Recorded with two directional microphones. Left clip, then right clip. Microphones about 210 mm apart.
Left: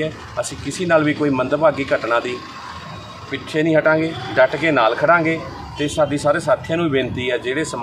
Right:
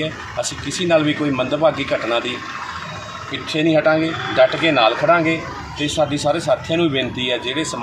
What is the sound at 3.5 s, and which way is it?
Speech, 5° left (ahead or behind).